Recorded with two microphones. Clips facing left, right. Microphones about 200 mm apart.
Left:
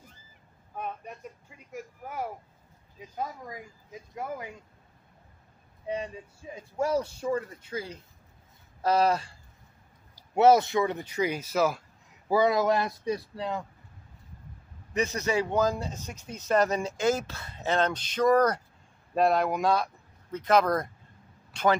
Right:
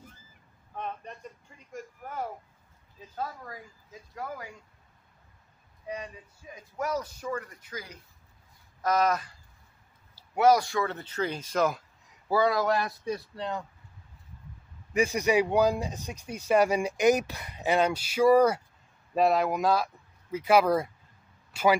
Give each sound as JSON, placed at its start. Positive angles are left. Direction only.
{"t": 1.0, "sound": "a sound", "side_deg": 10}
{"t": 3.0, "sound": "speech", "side_deg": 15}
{"t": 5.9, "sound": "speech", "side_deg": 30}
{"t": 10.3, "sound": "speech", "side_deg": 25}
{"t": 12.3, "sound": "speech", "side_deg": 20}
{"t": 15.0, "sound": "speech", "side_deg": -10}